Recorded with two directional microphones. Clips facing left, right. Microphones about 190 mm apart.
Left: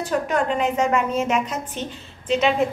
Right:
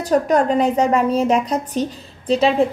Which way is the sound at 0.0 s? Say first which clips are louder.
Right 6 dB; 40° right (ahead or behind).